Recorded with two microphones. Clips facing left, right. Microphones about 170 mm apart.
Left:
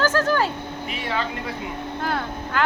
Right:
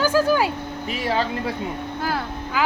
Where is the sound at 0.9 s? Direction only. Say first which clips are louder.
Right 4 dB; 35° right (ahead or behind).